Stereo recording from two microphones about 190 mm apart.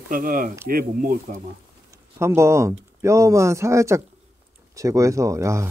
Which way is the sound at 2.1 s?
15° right (ahead or behind).